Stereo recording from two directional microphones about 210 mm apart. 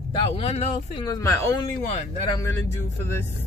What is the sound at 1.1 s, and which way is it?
Speech, 15° left (ahead or behind).